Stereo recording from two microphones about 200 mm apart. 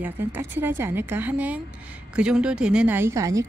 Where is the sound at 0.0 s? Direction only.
10° right (ahead or behind).